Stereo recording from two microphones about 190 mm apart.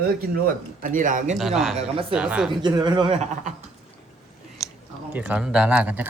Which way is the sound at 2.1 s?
5° right (ahead or behind).